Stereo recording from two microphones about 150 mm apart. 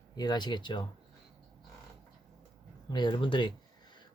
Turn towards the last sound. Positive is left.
turn(degrees=30)  # may be behind; listen again after turning